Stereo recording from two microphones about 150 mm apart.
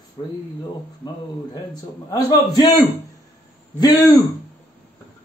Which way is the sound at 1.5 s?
25° left (ahead or behind).